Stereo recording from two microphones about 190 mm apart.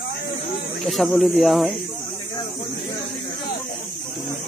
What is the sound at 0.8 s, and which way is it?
Speech, centre (ahead or behind).